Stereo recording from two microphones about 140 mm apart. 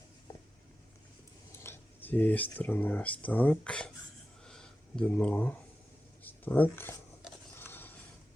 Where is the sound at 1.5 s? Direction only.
15° left (ahead or behind).